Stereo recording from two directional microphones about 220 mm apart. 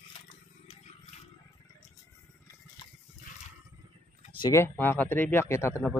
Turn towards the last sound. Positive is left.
turn(degrees=10)  # may be behind; listen again after turning